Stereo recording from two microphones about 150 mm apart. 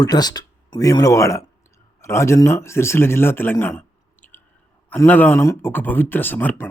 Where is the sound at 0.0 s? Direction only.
25° left (ahead or behind).